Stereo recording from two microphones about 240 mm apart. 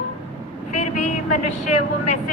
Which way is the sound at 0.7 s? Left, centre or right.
Left.